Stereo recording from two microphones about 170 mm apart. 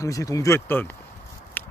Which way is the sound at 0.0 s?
20° left (ahead or behind).